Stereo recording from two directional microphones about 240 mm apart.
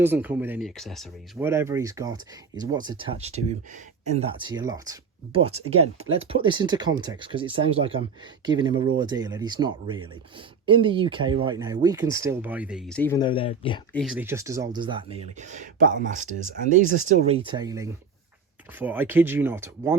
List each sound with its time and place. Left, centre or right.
0.0 s speech: centre
1.5 s speech: centre
5.4 s speech: right; by 13.0 s centre
13.0 s speech: centre
13.2 s speech: left
13.9 s speech: centre